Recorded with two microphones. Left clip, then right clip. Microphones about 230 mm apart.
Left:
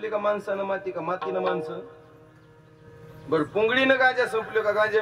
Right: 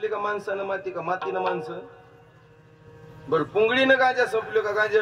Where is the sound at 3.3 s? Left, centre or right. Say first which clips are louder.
Right 1 dB; right.